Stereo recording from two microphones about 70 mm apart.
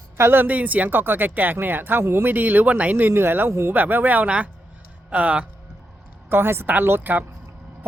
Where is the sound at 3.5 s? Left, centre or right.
Right.